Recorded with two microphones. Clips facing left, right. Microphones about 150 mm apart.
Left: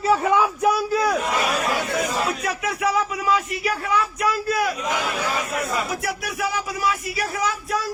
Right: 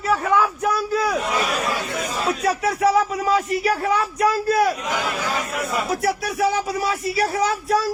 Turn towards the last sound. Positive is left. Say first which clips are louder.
# right 5 dB
turn(degrees=-35)  # may be behind; listen again after turning